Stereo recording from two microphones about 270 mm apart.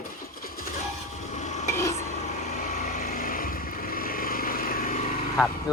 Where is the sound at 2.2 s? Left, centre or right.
Left.